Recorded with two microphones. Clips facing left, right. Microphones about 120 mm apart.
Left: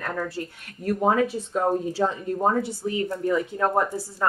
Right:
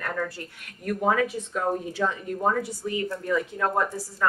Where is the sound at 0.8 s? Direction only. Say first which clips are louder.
Left 2 dB; 30° left (ahead or behind).